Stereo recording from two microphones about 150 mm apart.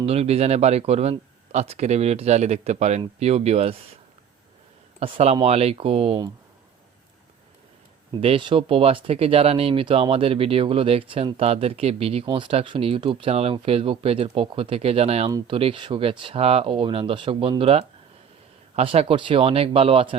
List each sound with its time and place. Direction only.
0.0 s speech: 40° right (ahead or behind)
4.9 s speech: 40° right (ahead or behind)
8.2 s speech: 35° right (ahead or behind)
15.3 s speech: 25° right (ahead or behind)
15.5 s speech: 35° right (ahead or behind)